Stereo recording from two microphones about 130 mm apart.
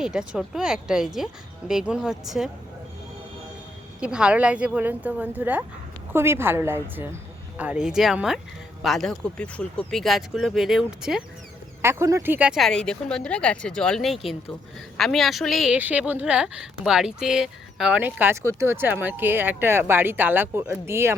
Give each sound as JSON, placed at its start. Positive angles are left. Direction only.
{"t": 0.0, "sound": "speech", "side_deg": -5}
{"t": 4.0, "sound": "a woman's voice", "side_deg": -5}
{"t": 7.6, "sound": "speech", "side_deg": -10}
{"t": 11.8, "sound": "a woman's voice", "side_deg": -20}
{"t": 12.5, "sound": "a woman's voice", "side_deg": 5}